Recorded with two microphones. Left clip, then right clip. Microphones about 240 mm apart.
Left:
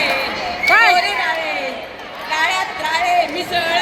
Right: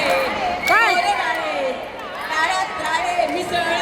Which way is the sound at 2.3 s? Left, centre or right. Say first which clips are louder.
Left 2 dB; right.